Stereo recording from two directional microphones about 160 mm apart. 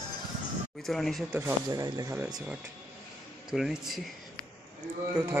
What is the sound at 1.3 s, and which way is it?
Speech, 20° right (ahead or behind).